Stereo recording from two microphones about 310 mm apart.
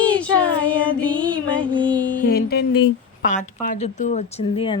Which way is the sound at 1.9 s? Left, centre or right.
Centre.